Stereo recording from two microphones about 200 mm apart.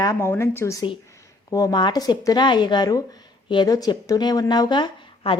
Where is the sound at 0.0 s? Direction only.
15° left (ahead or behind).